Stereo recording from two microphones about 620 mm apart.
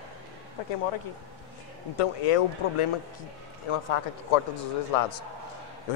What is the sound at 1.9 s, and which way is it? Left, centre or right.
Speech, left.